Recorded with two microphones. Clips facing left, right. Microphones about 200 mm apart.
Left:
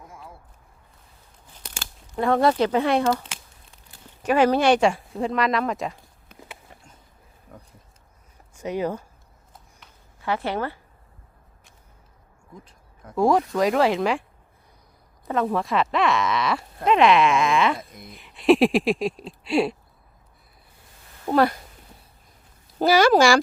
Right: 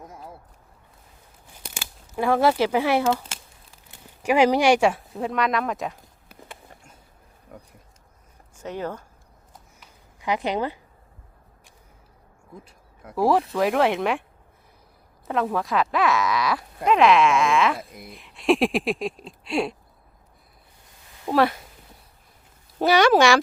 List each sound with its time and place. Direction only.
1.6 s speech: 10° right (ahead or behind)
4.2 s a sound: 10° right (ahead or behind)
8.5 s speech: 10° left (ahead or behind)
9.5 s a sound: 15° right (ahead or behind)
12.6 s speech: 5° right (ahead or behind)
15.3 s speech: centre (ahead or behind)
21.2 s speech: centre (ahead or behind)
22.8 s speech: centre (ahead or behind)